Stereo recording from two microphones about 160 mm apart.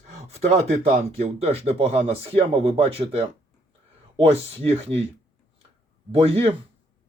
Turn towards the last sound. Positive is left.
turn(degrees=-40)  # may be behind; listen again after turning